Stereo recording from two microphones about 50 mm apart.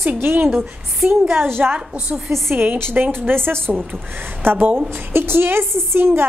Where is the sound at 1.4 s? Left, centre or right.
Right.